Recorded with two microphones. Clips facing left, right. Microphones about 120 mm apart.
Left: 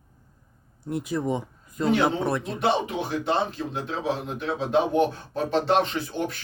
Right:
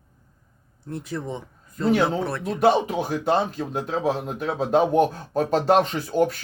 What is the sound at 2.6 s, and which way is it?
Speech, 40° right (ahead or behind).